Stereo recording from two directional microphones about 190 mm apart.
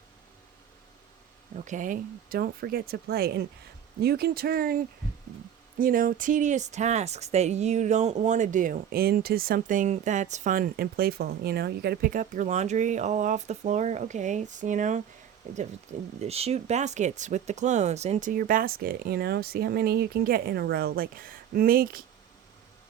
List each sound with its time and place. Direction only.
1.5 s speech: 40° right (ahead or behind)
5.8 s speech: 45° right (ahead or behind)